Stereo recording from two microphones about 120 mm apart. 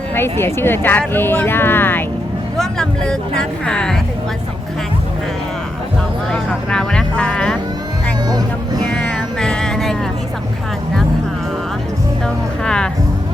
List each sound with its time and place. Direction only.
0.1 s speech: 20° left (ahead or behind)
2.6 s speech: 5° left (ahead or behind)
6.3 s vehicle: 5° left (ahead or behind)
8.9 s a sound: 10° left (ahead or behind)
12.2 s music: 5° left (ahead or behind)